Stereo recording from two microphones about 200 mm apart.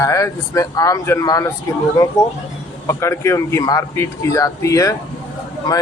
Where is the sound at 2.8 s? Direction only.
15° left (ahead or behind).